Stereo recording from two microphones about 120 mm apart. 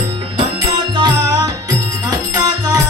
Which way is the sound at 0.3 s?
40° right (ahead or behind).